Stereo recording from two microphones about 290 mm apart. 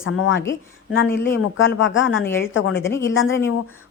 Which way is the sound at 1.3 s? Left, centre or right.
Left.